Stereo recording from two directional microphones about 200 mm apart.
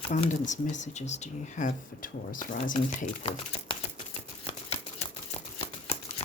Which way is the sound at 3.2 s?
30° left (ahead or behind).